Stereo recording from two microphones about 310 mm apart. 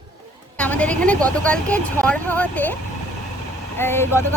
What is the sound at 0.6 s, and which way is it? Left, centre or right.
Speech, centre.